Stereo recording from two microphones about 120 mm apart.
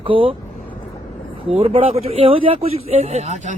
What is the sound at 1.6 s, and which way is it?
Speech, 55° right (ahead or behind).